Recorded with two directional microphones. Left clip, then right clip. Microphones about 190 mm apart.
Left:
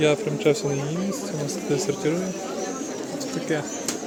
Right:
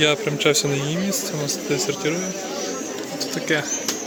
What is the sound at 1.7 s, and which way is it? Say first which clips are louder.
Speech: even; 20° left (ahead or behind).